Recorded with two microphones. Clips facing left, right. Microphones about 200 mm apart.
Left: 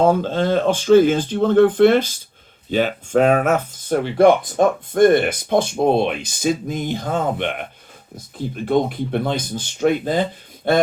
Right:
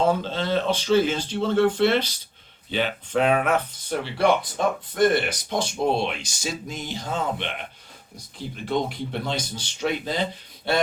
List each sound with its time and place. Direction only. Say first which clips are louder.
0.0 s speech: left 6 dB; 50° left (ahead or behind)